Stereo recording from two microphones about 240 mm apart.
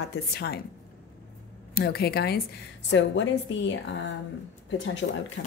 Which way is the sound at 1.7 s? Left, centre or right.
Left.